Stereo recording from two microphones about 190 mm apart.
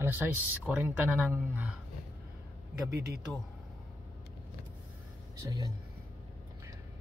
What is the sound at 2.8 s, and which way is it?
Speech, 60° right (ahead or behind).